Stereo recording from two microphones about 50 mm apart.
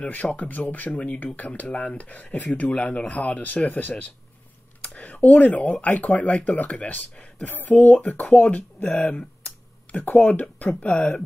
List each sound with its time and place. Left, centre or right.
0.0 s speech: left